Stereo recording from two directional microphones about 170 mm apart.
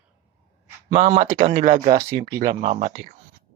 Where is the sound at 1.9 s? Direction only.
20° right (ahead or behind).